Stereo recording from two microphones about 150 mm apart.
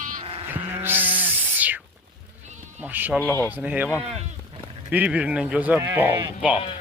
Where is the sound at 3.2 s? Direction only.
15° left (ahead or behind).